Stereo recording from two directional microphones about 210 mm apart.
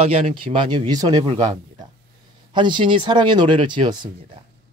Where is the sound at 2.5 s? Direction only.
20° right (ahead or behind).